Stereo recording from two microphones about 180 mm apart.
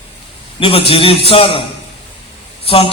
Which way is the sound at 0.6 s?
30° left (ahead or behind).